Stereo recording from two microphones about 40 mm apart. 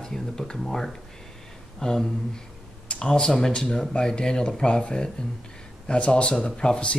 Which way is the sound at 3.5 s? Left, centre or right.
Left.